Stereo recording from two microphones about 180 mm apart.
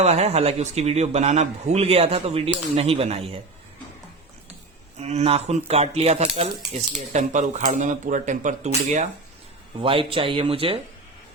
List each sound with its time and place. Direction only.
0.0 s a man's voice: 35° right (ahead or behind)
4.9 s a man's voice: 35° right (ahead or behind)